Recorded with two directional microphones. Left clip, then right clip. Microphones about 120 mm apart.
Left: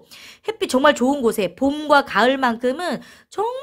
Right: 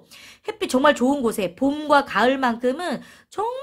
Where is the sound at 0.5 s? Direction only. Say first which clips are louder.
Left 2 dB; 30° left (ahead or behind).